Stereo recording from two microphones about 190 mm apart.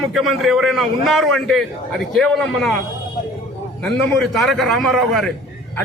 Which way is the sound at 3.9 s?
5° left (ahead or behind).